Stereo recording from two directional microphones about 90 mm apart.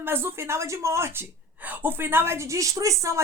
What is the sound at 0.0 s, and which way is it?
A woman's voice, 25° right (ahead or behind).